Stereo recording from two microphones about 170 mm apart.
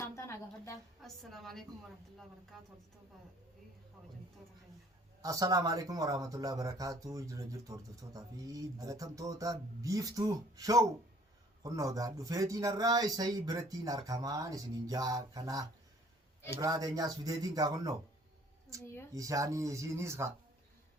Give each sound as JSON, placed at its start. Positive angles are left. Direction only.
{"t": 0.0, "sound": "a sound", "side_deg": 15}
{"t": 1.0, "sound": "a woman's voice", "side_deg": 0}
{"t": 5.2, "sound": "speech", "side_deg": -20}
{"t": 19.1, "sound": "speech", "side_deg": -20}